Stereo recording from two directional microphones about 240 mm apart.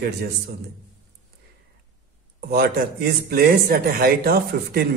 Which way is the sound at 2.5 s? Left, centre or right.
Right.